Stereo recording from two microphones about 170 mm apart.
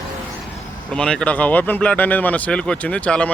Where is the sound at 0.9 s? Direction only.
5° left (ahead or behind).